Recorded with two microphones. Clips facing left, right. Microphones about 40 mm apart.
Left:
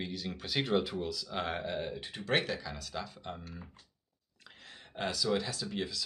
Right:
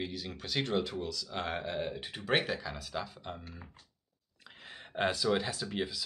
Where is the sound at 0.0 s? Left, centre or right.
Centre.